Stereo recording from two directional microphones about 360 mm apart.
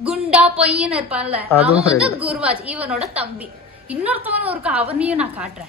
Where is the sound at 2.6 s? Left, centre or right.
Centre.